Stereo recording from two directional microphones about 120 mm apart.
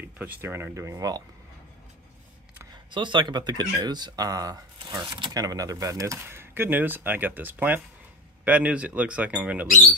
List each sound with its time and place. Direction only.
0.0 s speech: 15° right (ahead or behind)
2.7 s speech: 40° right (ahead or behind)
4.7 s speech: 40° right (ahead or behind); by 9.7 s 10° right (ahead or behind)